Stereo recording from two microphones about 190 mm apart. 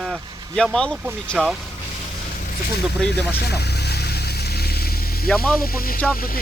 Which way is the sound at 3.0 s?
60° left (ahead or behind).